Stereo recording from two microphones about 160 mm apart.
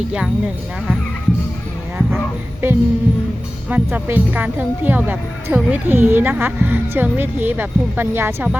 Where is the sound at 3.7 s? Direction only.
10° right (ahead or behind).